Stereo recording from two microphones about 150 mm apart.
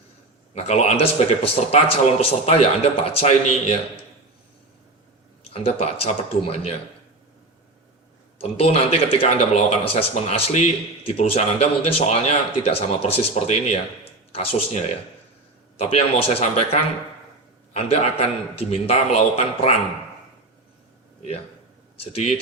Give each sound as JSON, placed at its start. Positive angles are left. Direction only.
{"t": 0.5, "sound": "speech", "side_deg": 45}
{"t": 5.5, "sound": "speech", "side_deg": 40}
{"t": 8.4, "sound": "speech", "side_deg": 40}
{"t": 21.2, "sound": "speech", "side_deg": 45}